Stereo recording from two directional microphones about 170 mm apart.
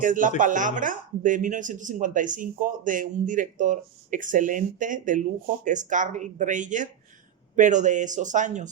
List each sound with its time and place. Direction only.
0.0 s speech: 50° right (ahead or behind)